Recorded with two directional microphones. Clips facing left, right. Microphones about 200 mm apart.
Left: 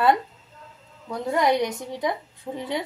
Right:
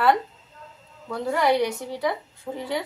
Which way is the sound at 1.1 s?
20° left (ahead or behind).